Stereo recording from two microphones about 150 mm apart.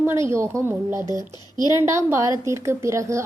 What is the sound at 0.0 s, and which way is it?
A woman's voice, 15° right (ahead or behind).